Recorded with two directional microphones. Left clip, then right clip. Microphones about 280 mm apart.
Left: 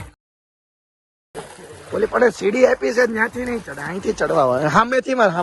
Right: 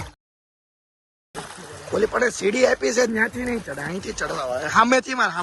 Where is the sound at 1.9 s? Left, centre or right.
Centre.